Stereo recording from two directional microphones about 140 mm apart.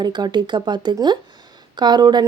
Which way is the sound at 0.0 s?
30° right (ahead or behind).